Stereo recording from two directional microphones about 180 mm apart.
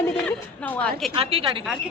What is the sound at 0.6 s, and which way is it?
Speech, 5° left (ahead or behind).